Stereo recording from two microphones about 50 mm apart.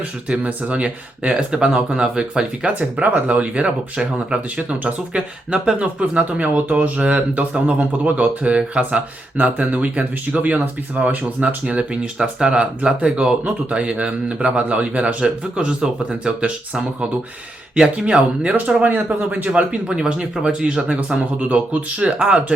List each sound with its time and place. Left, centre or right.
0.3 s speech: right